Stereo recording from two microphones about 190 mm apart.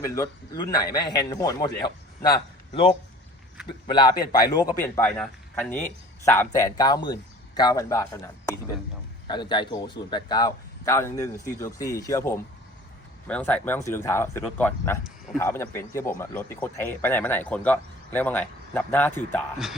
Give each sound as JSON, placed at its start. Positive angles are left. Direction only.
{"t": 0.0, "sound": "speech", "side_deg": 15}
{"t": 3.8, "sound": "speech", "side_deg": 25}